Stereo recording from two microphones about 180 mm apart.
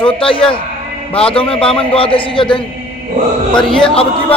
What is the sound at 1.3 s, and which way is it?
A man's voice, 30° left (ahead or behind).